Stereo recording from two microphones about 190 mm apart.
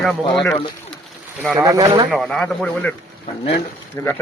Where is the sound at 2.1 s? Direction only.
Centre (ahead or behind).